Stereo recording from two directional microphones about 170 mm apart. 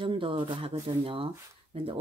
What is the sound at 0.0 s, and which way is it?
Speech, 30° right (ahead or behind).